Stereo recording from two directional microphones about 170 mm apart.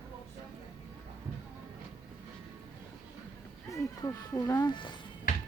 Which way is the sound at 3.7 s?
20° left (ahead or behind).